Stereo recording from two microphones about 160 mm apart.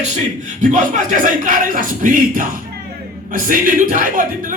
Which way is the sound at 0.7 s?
50° right (ahead or behind).